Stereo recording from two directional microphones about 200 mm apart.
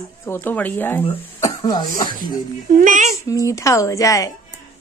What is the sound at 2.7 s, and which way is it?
Speech, 40° right (ahead or behind).